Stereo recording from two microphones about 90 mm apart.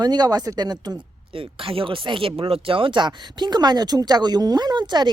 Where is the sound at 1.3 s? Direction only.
75° right (ahead or behind); by 5.1 s 55° right (ahead or behind).